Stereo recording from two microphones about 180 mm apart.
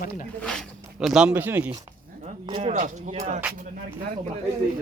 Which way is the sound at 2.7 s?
40° right (ahead or behind).